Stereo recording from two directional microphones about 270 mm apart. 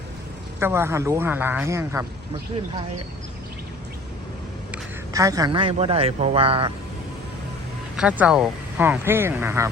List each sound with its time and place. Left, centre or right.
0.6 s speech: centre
4.7 s speech: centre
7.9 s speech: centre